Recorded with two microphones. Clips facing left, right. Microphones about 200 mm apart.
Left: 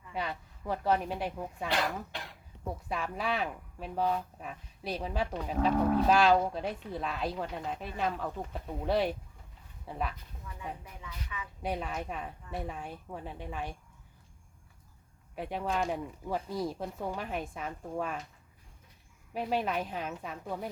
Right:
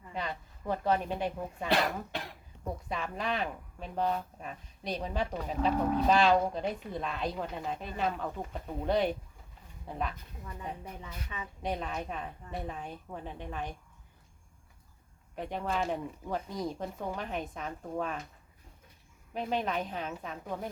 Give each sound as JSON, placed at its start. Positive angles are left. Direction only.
{"t": 0.1, "sound": "a woman's voice", "side_deg": 5}
{"t": 2.9, "sound": "speech", "side_deg": 5}
{"t": 11.0, "sound": "a woman's voice", "side_deg": -35}
{"t": 11.6, "sound": "speech", "side_deg": 5}
{"t": 15.4, "sound": "a woman's voice", "side_deg": 5}
{"t": 15.6, "sound": "speech", "side_deg": -5}
{"t": 15.9, "sound": "a woman's voice", "side_deg": 5}
{"t": 19.3, "sound": "a woman's voice", "side_deg": 5}